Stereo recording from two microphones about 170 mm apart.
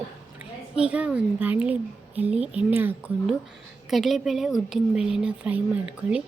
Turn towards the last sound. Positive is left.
turn(degrees=-5)  # may be behind; listen again after turning